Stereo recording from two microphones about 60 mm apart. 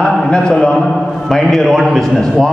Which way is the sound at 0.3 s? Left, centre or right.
Centre.